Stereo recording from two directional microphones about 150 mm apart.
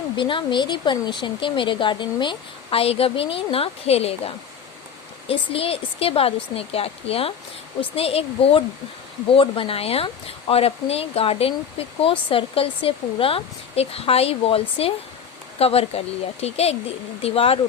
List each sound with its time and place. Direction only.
0.2 s speech: 35° left (ahead or behind)
5.3 s speech: 40° left (ahead or behind)